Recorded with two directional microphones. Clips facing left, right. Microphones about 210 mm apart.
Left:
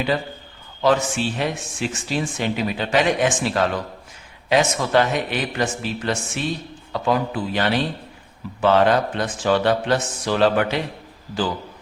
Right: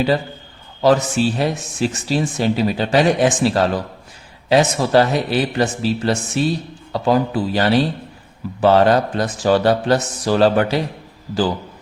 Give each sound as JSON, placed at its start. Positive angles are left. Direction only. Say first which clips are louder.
{"t": 0.8, "sound": "speech", "louder": "right 4 dB", "side_deg": -40}